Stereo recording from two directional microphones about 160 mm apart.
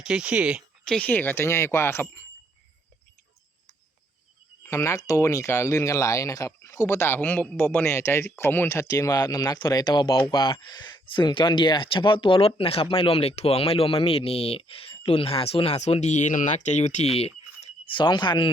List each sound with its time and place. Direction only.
0.0 s speech: 5° right (ahead or behind)
0.9 s speech: 10° left (ahead or behind)
4.6 s speech: 20° left (ahead or behind)